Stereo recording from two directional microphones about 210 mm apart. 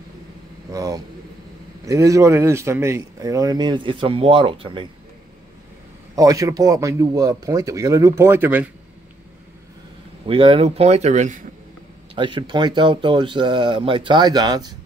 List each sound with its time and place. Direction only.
0.7 s speech: 15° right (ahead or behind)
6.1 s speech: 15° right (ahead or behind)
10.2 s speech: 25° right (ahead or behind)
12.2 s speech: 25° right (ahead or behind)